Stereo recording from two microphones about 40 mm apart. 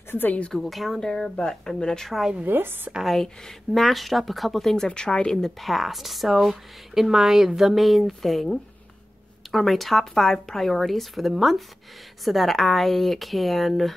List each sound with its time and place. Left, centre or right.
0.1 s a woman's voice: left
0.5 s speech: centre
2.4 s speech: right
3.0 s speech: centre
5.6 s speech: centre